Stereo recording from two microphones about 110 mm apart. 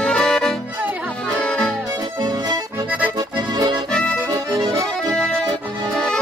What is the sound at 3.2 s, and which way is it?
Accordion, 40° right (ahead or behind).